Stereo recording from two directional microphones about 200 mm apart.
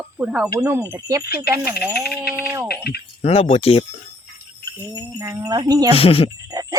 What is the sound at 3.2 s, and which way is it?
Speech, 30° left (ahead or behind).